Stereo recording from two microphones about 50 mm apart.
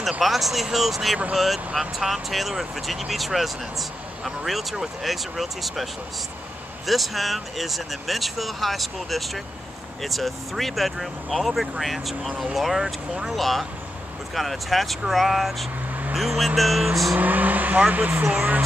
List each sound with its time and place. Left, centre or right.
0.2 s speech: centre
6.9 s speech: centre
17.1 s speech: right